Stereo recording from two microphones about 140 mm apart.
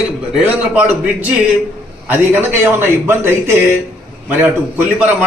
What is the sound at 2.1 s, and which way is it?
A man's voice, 15° right (ahead or behind).